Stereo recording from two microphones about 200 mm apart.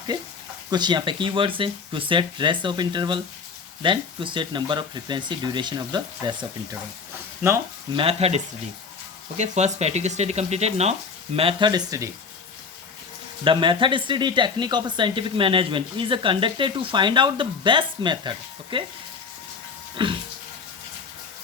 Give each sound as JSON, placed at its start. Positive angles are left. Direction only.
{"t": 0.7, "sound": "speech", "side_deg": -20}
{"t": 7.9, "sound": "speech", "side_deg": -30}
{"t": 9.4, "sound": "speech", "side_deg": -35}
{"t": 13.4, "sound": "speech", "side_deg": -25}
{"t": 20.0, "sound": "speech", "side_deg": -25}